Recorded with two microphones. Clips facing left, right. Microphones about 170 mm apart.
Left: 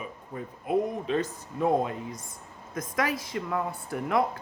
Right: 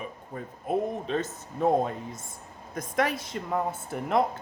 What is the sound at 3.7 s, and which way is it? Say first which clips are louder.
Speech: right 1 dB; 20° right (ahead or behind).